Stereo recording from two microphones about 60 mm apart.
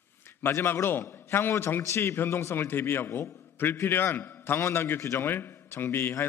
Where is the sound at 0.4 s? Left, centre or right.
Left.